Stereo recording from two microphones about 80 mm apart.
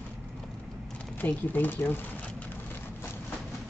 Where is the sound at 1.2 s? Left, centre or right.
Left.